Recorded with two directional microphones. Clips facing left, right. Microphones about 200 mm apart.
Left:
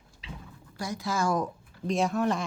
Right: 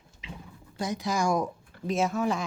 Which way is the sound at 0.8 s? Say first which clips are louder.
Right 2 dB; 20° right (ahead or behind).